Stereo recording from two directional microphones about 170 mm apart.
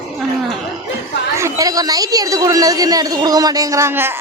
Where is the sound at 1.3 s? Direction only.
20° right (ahead or behind).